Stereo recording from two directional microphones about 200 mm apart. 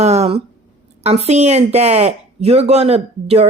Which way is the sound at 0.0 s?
35° right (ahead or behind).